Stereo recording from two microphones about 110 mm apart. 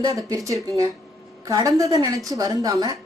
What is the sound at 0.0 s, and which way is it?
Speech, 30° right (ahead or behind).